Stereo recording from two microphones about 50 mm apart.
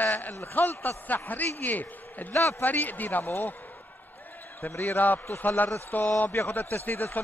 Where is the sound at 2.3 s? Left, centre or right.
Left.